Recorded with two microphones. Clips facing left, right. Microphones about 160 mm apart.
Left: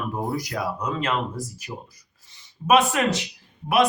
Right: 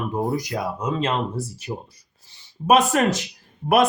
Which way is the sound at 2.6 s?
40° right (ahead or behind).